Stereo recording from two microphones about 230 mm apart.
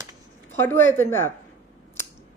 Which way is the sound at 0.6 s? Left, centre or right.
Centre.